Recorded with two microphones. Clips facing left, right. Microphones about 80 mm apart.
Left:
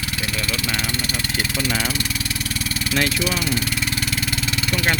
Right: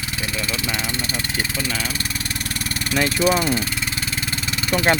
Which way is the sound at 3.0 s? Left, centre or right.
Right.